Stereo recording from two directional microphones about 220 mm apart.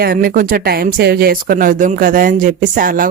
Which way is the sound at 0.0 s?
45° right (ahead or behind).